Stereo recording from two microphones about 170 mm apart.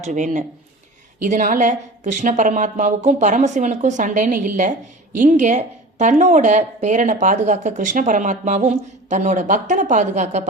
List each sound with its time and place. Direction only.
0.0 s a woman's voice: 45° right (ahead or behind)